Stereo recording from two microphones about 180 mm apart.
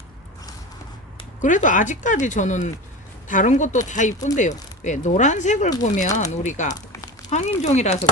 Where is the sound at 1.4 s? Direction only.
45° left (ahead or behind).